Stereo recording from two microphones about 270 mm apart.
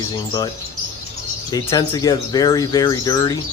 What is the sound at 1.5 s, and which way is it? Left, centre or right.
Speech, centre.